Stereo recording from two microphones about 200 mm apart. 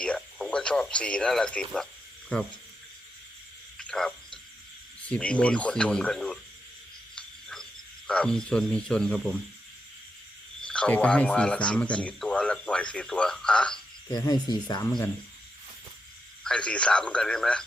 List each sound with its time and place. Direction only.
0.0 s speech: 5° left (ahead or behind)
3.8 s frog: 5° left (ahead or behind)
5.0 s speech: 5° left (ahead or behind)
7.2 s frog: 5° left (ahead or behind)
10.6 s speech: 5° left (ahead or behind)
14.1 s speech: 20° left (ahead or behind)
16.4 s speech: 5° left (ahead or behind)